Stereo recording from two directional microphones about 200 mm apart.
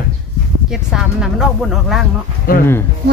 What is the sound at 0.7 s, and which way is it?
Speech, centre (ahead or behind).